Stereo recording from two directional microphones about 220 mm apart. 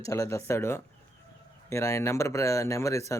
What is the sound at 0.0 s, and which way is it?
Speech, 15° left (ahead or behind).